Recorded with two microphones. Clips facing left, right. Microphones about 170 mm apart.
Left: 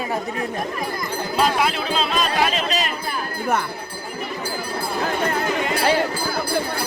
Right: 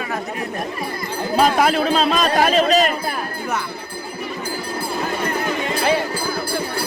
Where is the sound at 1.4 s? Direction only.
45° right (ahead or behind).